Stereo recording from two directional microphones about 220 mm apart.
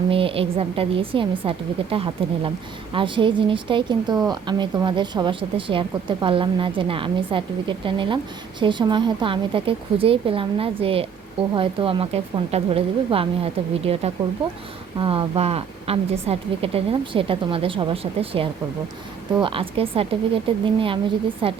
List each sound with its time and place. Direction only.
0.1 s speech: 25° right (ahead or behind)